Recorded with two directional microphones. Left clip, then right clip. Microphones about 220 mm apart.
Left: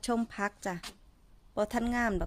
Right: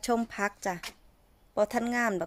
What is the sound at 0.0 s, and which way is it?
A woman's voice, centre (ahead or behind).